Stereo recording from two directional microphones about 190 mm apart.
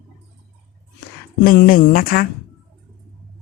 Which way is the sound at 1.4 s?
45° left (ahead or behind).